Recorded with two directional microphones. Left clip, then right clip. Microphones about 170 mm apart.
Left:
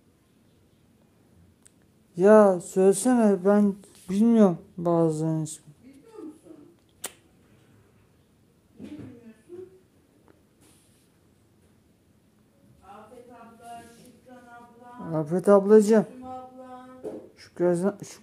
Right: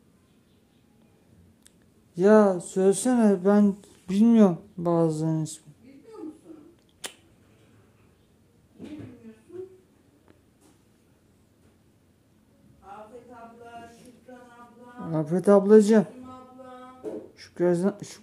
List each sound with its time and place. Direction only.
2.1 s speech: centre (ahead or behind)
15.0 s speech: 10° right (ahead or behind)
17.4 s speech: 5° right (ahead or behind)